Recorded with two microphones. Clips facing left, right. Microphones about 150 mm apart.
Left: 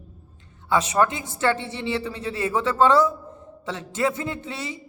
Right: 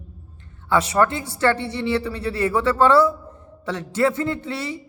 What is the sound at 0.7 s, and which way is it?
A woman's voice, 15° left (ahead or behind).